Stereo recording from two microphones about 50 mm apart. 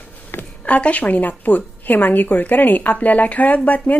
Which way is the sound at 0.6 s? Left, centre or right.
Left.